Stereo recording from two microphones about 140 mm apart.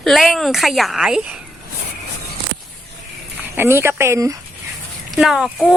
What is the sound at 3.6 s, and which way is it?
Speech, 15° right (ahead or behind).